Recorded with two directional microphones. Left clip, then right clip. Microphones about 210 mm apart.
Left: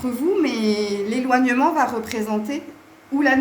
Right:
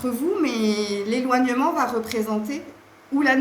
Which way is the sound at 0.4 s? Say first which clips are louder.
Left 2 dB; 30° left (ahead or behind).